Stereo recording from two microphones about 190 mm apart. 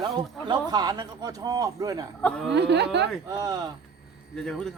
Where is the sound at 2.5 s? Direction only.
65° right (ahead or behind).